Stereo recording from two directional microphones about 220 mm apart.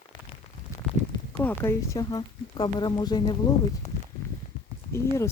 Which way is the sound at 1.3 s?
10° left (ahead or behind).